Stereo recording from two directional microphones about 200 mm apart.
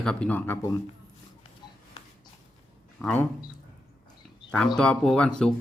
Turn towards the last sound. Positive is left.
turn(degrees=5)  # may be behind; listen again after turning